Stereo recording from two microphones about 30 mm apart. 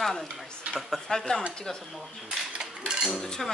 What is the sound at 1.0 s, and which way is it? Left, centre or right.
Speech, left.